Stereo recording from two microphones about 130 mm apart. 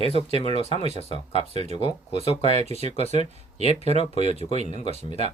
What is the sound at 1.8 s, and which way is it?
Speech, 45° left (ahead or behind).